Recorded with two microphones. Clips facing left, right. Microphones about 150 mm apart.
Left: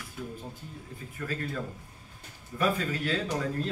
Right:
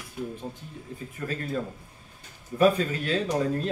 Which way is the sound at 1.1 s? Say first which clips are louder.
Right 3 dB; 25° right (ahead or behind).